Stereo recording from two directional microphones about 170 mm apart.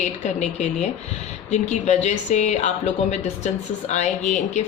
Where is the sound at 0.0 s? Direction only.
45° left (ahead or behind).